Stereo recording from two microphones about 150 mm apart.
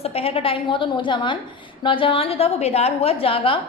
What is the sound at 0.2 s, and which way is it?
A woman's voice, 40° left (ahead or behind).